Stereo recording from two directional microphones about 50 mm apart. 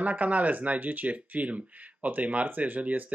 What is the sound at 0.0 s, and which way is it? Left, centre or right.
Speech, right.